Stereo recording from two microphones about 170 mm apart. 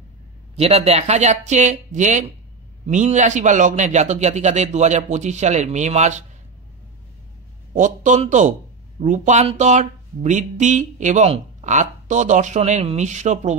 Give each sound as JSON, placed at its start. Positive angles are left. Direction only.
{"t": 0.6, "sound": "speech", "side_deg": -35}
{"t": 7.7, "sound": "speech", "side_deg": -45}